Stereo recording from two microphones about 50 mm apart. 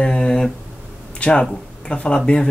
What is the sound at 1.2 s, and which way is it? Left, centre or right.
Speech, left.